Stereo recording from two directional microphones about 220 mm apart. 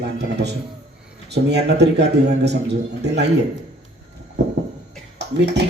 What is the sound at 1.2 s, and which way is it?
A man's voice, 50° right (ahead or behind).